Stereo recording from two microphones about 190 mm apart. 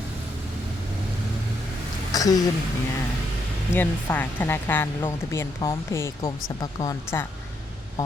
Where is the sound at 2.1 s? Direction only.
20° left (ahead or behind).